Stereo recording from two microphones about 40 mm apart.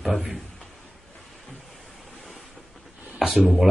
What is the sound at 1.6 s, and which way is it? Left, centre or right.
Waves, centre.